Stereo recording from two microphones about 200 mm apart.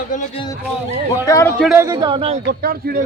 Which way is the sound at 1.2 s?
15° left (ahead or behind).